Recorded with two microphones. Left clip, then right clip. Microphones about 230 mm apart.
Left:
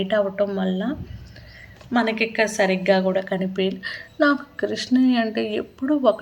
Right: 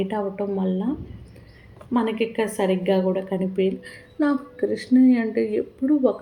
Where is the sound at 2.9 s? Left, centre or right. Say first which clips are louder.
Left 3 dB; centre.